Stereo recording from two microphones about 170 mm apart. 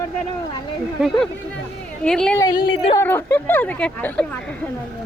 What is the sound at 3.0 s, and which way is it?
Speech, 15° left (ahead or behind).